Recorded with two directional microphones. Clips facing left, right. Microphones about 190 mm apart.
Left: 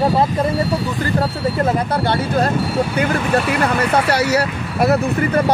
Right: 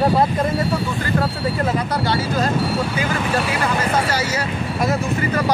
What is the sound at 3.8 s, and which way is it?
Speech, 65° left (ahead or behind).